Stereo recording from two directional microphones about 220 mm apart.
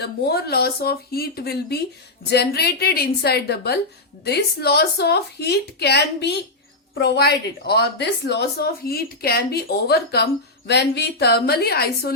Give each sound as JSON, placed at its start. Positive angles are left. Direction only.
{"t": 0.0, "sound": "a woman's voice", "side_deg": 45}